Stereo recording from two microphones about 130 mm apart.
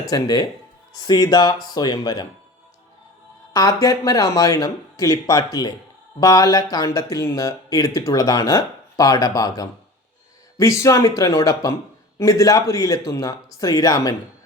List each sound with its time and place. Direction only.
0.0 s speech: 30° left (ahead or behind)
3.5 s speech: 25° left (ahead or behind)